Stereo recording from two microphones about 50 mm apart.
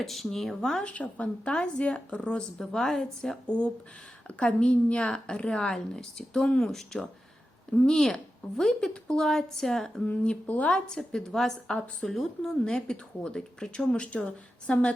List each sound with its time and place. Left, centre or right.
0.0 s speech: centre
0.9 s a woman's voice: left
2.7 s a woman's voice: centre
3.4 s a woman's voice: centre
10.4 s speech: left
10.7 s a woman's voice: centre